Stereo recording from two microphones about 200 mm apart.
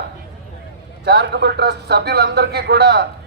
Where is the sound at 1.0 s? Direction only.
55° right (ahead or behind).